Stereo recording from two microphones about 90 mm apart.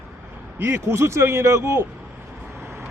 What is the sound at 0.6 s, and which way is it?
Speech, 25° right (ahead or behind).